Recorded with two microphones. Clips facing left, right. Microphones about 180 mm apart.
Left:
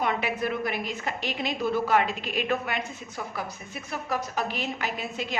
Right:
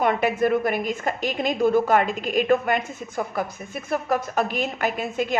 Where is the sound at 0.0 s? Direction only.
50° right (ahead or behind).